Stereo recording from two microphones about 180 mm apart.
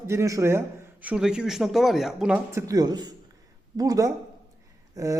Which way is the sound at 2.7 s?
20° right (ahead or behind).